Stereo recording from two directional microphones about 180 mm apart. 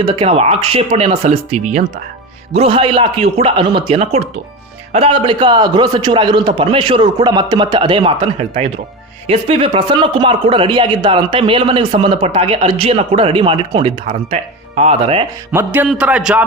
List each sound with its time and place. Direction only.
0.0 s speech: 35° right (ahead or behind)
15.5 s speech: 10° right (ahead or behind)